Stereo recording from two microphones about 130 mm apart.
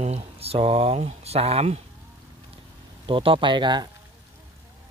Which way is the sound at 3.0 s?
40° right (ahead or behind).